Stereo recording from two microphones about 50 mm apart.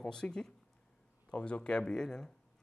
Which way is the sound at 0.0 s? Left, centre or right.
Centre.